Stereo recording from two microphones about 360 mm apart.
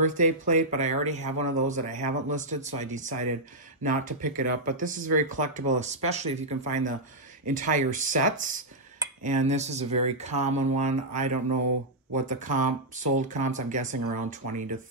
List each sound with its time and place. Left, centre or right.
0.0 s speech: right